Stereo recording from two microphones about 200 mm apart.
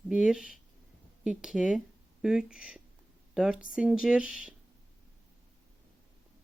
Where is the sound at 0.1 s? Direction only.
5° right (ahead or behind).